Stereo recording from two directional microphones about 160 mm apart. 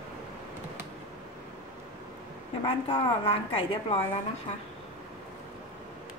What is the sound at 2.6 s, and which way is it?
A woman's voice, 35° left (ahead or behind).